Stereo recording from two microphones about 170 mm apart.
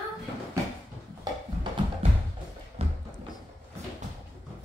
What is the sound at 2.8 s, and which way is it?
Music, 35° right (ahead or behind).